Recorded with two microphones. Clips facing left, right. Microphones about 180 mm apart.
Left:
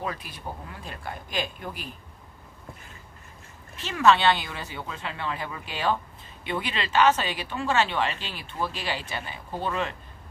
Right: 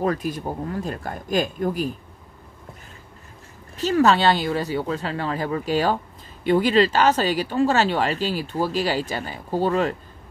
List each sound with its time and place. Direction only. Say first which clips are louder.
0.0 s speech: right 10 dB; 45° right (ahead or behind)
3.7 s speech: right 4 dB; 40° right (ahead or behind)